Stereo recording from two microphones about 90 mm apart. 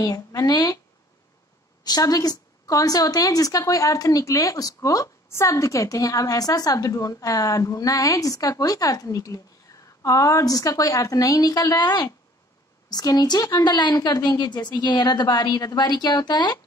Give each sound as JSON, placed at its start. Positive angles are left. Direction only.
{"t": 0.0, "sound": "a woman's voice", "side_deg": 40}
{"t": 1.9, "sound": "a woman's voice", "side_deg": 45}